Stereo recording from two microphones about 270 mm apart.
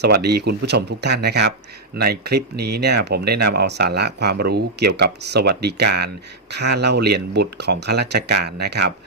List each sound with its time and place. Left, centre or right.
0.0 s speech: right